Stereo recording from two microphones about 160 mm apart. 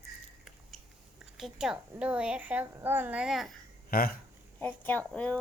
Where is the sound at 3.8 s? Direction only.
65° left (ahead or behind).